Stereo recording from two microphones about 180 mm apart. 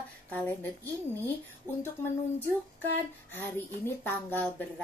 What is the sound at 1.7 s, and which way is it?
Speech, 10° right (ahead or behind).